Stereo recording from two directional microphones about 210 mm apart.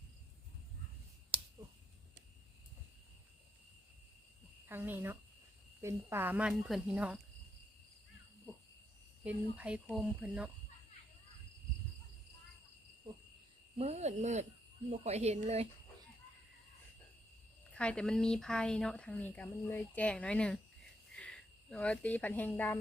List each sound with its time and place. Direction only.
4.6 s speech: 10° right (ahead or behind)
9.2 s speech: 5° right (ahead or behind)
13.7 s speech: 30° right (ahead or behind)
17.7 s speech: 5° left (ahead or behind)